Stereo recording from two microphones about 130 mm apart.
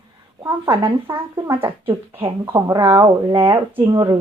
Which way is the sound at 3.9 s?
30° right (ahead or behind).